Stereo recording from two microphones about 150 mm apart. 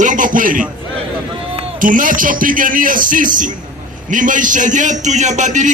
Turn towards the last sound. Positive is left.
turn(degrees=-55)  # may be behind; listen again after turning